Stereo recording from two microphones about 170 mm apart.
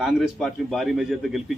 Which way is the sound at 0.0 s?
Centre (ahead or behind).